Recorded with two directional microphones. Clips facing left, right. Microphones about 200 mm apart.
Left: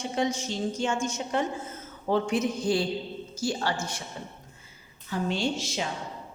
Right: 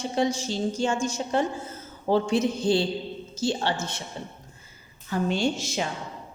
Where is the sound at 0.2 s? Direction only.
30° right (ahead or behind).